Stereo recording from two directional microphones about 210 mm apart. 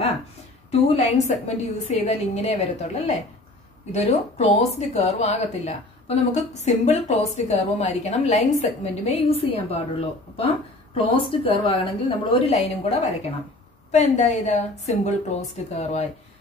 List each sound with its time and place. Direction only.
0.7 s a woman's voice: 30° left (ahead or behind)